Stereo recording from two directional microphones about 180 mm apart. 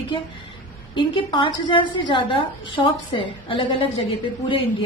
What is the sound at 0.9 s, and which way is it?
A woman's voice, 30° left (ahead or behind).